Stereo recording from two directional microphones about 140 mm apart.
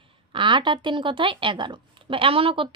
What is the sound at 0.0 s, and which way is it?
A woman's voice, 35° right (ahead or behind).